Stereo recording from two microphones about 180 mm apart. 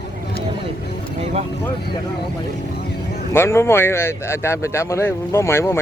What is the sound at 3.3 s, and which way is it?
A man's voice, 15° left (ahead or behind).